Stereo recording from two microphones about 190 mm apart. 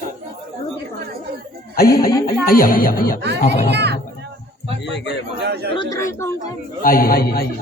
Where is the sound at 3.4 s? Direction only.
35° left (ahead or behind).